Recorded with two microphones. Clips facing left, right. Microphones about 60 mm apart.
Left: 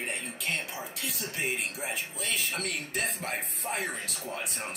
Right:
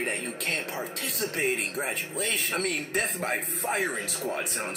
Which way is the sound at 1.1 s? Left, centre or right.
Right.